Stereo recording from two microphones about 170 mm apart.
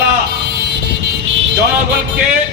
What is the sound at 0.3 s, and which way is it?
Car alarm, 80° right.